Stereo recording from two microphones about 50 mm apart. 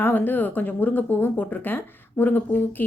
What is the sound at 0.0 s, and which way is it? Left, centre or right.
A woman's voice, left.